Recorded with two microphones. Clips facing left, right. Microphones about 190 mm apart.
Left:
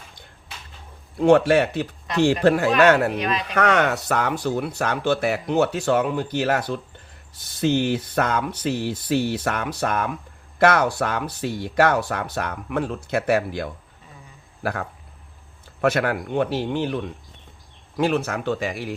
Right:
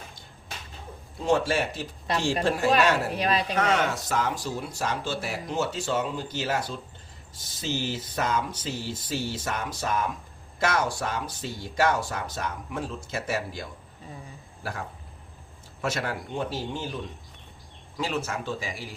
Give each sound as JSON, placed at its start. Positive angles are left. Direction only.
{"t": 1.2, "sound": "speech", "side_deg": 65}
{"t": 3.2, "sound": "speech", "side_deg": -35}
{"t": 3.5, "sound": "speech", "side_deg": 65}